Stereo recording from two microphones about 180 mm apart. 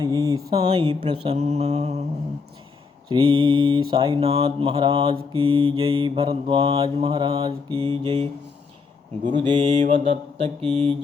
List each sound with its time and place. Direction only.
0.0 s mantra: 20° right (ahead or behind); by 2.0 s 35° right (ahead or behind)
3.1 s mantra: 30° right (ahead or behind)
9.8 s mantra: 35° right (ahead or behind)